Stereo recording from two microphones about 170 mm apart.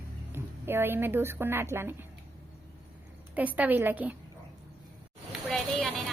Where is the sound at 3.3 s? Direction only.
10° right (ahead or behind).